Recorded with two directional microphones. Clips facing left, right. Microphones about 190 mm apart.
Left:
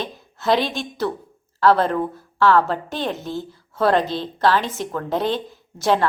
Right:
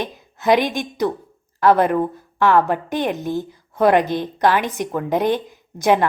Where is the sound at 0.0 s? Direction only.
15° right (ahead or behind).